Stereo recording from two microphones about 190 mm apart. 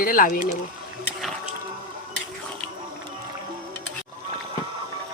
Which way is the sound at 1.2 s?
Centre (ahead or behind).